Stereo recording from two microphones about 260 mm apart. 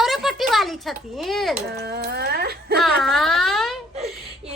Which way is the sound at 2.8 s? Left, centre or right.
Centre.